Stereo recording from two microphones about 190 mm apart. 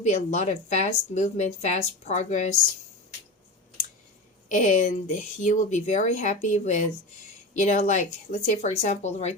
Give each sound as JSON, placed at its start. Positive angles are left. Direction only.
{"t": 0.0, "sound": "speech", "side_deg": 40}
{"t": 4.4, "sound": "speech", "side_deg": 40}